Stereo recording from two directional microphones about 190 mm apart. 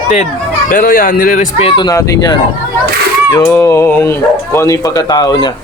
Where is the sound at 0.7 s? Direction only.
50° left (ahead or behind).